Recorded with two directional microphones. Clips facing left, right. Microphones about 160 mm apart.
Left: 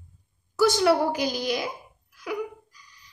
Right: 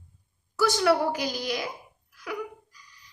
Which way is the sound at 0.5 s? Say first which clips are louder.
Left 2 dB; 25° left (ahead or behind).